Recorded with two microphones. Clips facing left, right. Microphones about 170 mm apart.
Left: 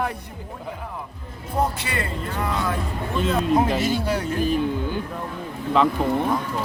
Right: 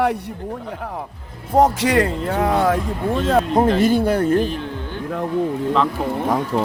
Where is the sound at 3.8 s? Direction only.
55° right (ahead or behind).